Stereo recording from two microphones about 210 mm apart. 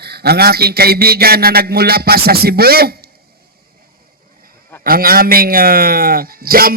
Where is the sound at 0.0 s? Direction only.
50° right (ahead or behind).